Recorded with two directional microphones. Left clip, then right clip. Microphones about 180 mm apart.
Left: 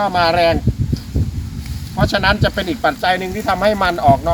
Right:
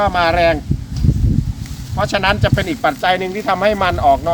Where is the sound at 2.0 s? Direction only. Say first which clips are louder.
Even; 10° left (ahead or behind).